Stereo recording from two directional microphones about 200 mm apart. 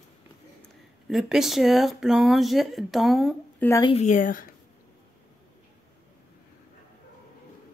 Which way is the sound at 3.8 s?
30° left (ahead or behind).